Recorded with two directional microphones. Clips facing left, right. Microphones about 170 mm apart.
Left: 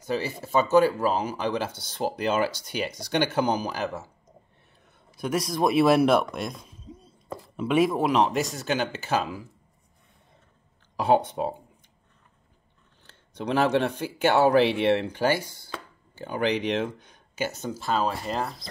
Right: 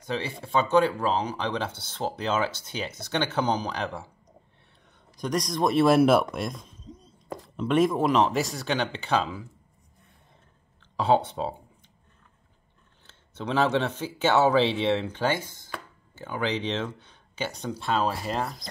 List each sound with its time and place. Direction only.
0.0 s speech: 5° left (ahead or behind)
2.4 s speech: 25° right (ahead or behind)
2.7 s speech: 15° left (ahead or behind)
5.1 s speech: 5° left (ahead or behind)
11.0 s speech: 10° left (ahead or behind)
13.0 s speech: 15° left (ahead or behind)